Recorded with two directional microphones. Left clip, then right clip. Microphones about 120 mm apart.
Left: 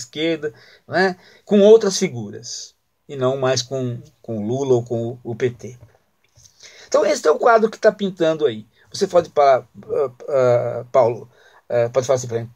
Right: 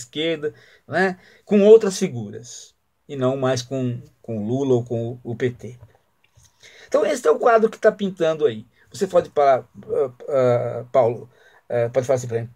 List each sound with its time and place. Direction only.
0.0 s speech: 15° right (ahead or behind)